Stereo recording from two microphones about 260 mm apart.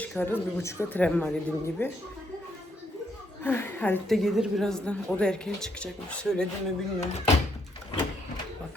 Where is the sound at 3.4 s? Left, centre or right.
Centre.